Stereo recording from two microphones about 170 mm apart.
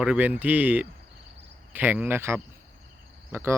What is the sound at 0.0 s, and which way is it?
Speech, 5° right (ahead or behind).